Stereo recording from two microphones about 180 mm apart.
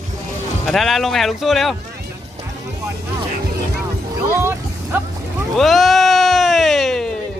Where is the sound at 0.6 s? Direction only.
Centre (ahead or behind).